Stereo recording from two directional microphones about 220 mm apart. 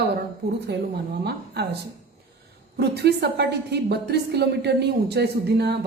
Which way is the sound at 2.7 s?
50° right (ahead or behind).